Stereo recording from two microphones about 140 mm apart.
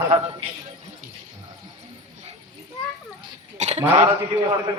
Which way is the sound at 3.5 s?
55° right (ahead or behind).